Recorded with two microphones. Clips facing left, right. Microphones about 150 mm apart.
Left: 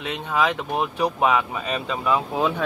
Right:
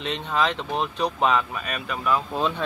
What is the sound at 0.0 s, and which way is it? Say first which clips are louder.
Speech: left 1 dB; 10° left (ahead or behind).